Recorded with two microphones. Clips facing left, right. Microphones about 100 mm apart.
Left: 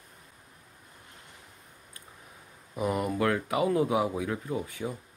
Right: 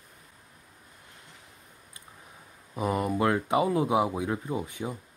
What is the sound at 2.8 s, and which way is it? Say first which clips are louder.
Speech: right 1 dB; 25° right (ahead or behind).